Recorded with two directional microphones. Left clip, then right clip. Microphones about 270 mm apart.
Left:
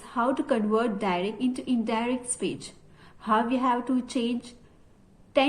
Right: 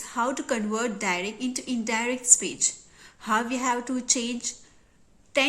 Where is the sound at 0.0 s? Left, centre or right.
Centre.